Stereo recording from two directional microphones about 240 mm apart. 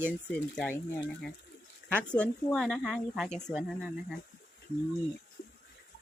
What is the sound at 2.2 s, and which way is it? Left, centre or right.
Speech, centre.